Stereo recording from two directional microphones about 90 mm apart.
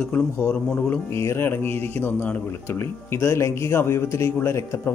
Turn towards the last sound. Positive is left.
turn(degrees=30)  # may be behind; listen again after turning